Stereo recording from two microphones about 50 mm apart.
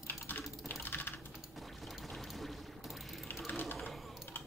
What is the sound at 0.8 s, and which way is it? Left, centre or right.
Typing, left.